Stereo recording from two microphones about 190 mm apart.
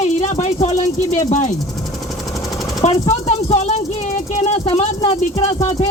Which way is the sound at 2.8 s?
40° left (ahead or behind).